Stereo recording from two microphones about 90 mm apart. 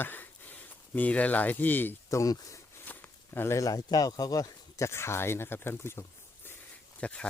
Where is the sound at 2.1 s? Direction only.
40° left (ahead or behind).